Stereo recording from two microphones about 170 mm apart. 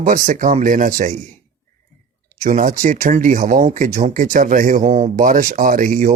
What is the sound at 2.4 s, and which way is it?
Speech, 45° right (ahead or behind).